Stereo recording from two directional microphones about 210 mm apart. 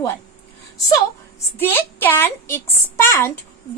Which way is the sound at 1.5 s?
10° left (ahead or behind).